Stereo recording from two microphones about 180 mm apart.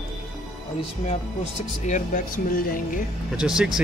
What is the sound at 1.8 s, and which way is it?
Speech, 40° left (ahead or behind).